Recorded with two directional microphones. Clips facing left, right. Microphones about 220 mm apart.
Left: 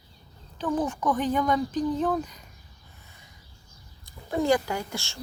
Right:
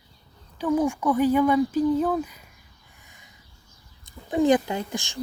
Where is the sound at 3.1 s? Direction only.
15° right (ahead or behind).